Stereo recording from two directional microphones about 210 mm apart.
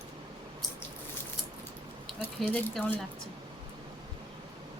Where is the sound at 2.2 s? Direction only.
10° left (ahead or behind).